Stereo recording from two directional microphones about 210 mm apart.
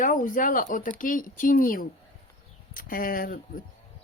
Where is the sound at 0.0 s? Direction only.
40° left (ahead or behind).